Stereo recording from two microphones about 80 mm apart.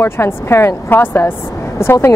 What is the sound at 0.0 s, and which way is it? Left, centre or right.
A woman's voice, left.